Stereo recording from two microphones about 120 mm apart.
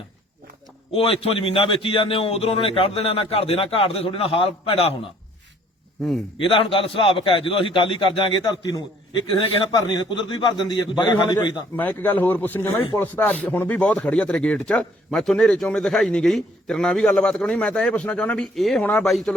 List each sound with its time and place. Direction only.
0.9 s a man's voice: 50° left (ahead or behind)
6.4 s a man's voice: 45° left (ahead or behind); by 9.2 s 30° left (ahead or behind)
9.4 s a man's voice: 50° left (ahead or behind)
9.7 s a man's voice: 35° left (ahead or behind)
11.8 s speech: 15° left (ahead or behind)
18.8 s speech: 10° left (ahead or behind)
19.0 s speech: centre (ahead or behind)